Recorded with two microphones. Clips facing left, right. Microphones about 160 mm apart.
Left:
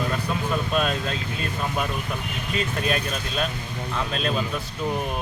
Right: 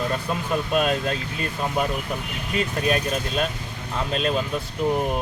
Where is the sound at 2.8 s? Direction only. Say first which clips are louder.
Right 3 dB; 40° right (ahead or behind).